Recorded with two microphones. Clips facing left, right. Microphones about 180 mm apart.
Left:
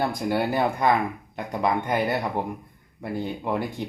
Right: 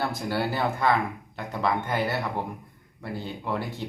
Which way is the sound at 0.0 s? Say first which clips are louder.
Left 3 dB; 15° left (ahead or behind).